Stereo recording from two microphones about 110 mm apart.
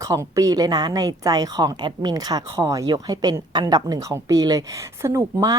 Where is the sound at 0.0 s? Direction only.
30° right (ahead or behind).